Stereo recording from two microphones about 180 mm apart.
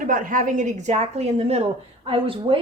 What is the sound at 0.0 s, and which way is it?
A woman's voice, 50° right (ahead or behind).